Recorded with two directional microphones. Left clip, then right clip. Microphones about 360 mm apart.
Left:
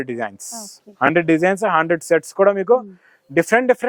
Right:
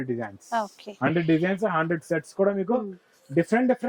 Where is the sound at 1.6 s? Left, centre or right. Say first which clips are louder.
Left 8 dB; centre.